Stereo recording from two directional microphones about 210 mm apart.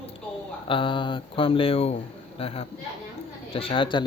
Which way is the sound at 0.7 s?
25° left (ahead or behind).